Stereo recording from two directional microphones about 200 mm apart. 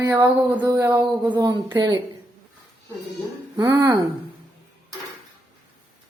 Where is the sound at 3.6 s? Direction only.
20° right (ahead or behind).